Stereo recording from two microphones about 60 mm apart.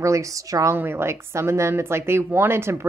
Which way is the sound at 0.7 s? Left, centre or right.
Right.